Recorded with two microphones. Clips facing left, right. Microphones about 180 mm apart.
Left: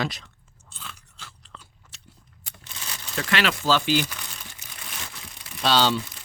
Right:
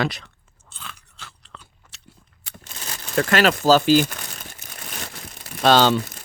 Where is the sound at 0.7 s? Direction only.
65° right (ahead or behind).